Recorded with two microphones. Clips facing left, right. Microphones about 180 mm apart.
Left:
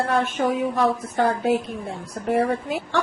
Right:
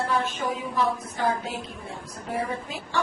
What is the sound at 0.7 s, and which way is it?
A woman's voice, 65° left (ahead or behind).